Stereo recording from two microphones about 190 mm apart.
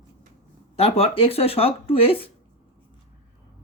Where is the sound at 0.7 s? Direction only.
30° left (ahead or behind).